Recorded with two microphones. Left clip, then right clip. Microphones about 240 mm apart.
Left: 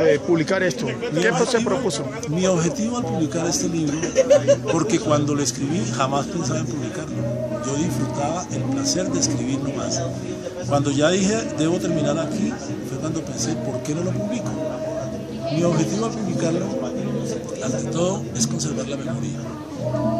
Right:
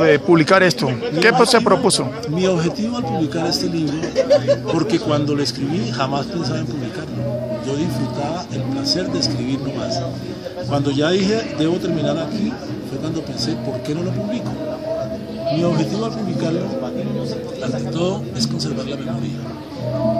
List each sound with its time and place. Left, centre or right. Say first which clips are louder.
0.0 s a man's voice: right 5 dB; right
2.3 s a man's voice: right 2 dB; centre
3.8 s speech: left 3 dB; left
4.7 s a man's voice: right 1 dB; centre
7.7 s a man's voice: right 2 dB; centre
10.7 s a man's voice: right 1 dB; centre
15.5 s a man's voice: right 1 dB; centre
17.9 s speech: right 1 dB; centre